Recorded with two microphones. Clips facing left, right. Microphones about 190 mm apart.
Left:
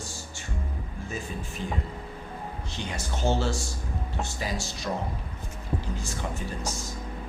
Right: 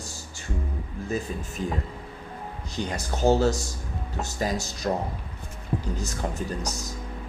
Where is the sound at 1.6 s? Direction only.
40° right (ahead or behind).